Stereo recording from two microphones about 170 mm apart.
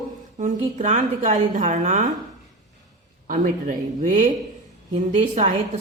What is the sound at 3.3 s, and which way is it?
A woman's voice, 45° right (ahead or behind).